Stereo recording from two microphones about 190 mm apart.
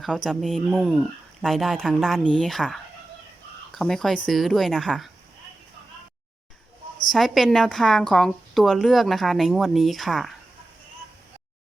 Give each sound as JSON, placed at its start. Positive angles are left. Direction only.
{"t": 0.0, "sound": "a woman's voice", "side_deg": 0}
{"t": 7.1, "sound": "a woman's voice", "side_deg": 0}